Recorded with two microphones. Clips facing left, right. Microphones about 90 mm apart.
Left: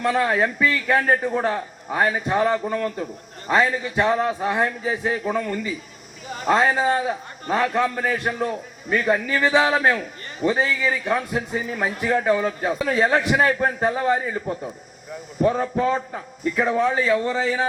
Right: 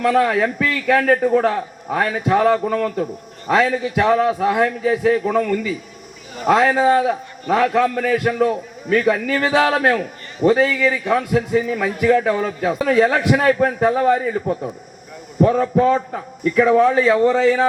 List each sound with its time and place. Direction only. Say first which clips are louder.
0.0 s a man's voice: right 4 dB; 65° right (ahead or behind)
1.2 s a man's voice: right 6 dB; 55° right (ahead or behind)
12.2 s a man's voice: right 2 dB; 55° right (ahead or behind)
15.4 s a man's voice: right 5 dB; 55° right (ahead or behind)
15.9 s a man's voice: right 6 dB; 65° right (ahead or behind)